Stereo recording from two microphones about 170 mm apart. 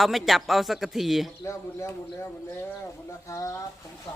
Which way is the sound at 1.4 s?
15° left (ahead or behind).